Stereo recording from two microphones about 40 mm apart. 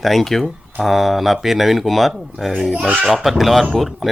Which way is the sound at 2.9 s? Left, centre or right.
Right.